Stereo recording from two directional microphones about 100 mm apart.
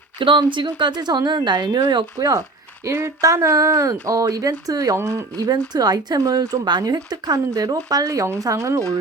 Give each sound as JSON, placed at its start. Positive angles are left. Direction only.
{"t": 0.2, "sound": "speech", "side_deg": -55}
{"t": 2.1, "sound": "speech", "side_deg": -35}